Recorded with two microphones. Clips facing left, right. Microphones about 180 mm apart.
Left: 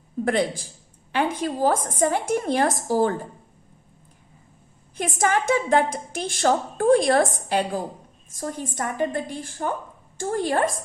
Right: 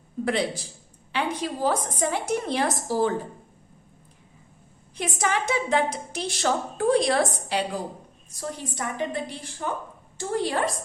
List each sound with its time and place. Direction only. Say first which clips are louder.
0.3 s a woman's voice: left 3 dB; 50° left (ahead or behind)
4.9 s a woman's voice: left 4 dB; 50° left (ahead or behind)